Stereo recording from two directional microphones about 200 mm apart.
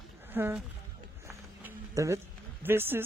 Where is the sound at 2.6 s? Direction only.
10° right (ahead or behind).